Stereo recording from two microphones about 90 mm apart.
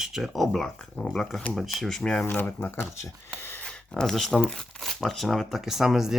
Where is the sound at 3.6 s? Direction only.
10° left (ahead or behind).